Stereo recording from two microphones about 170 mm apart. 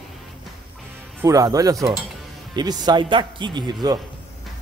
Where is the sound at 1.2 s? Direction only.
20° right (ahead or behind).